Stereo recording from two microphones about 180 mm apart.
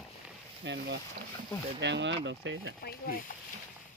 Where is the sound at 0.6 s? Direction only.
75° right (ahead or behind); by 2.8 s 90° right.